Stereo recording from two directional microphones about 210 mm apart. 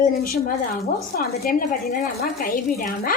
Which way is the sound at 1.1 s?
45° left (ahead or behind).